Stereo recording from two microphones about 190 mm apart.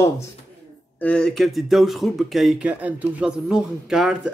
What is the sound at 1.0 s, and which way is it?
Speech, 5° left (ahead or behind).